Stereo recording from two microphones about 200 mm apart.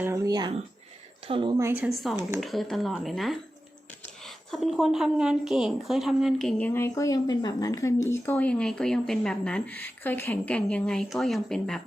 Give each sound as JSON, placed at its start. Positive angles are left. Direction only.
{"t": 0.0, "sound": "a woman's voice", "side_deg": -15}